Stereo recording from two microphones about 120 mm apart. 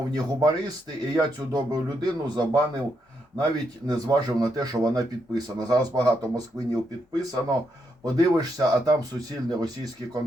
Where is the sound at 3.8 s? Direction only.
35° right (ahead or behind).